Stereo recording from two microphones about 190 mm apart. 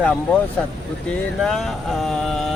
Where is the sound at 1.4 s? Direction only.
Centre (ahead or behind).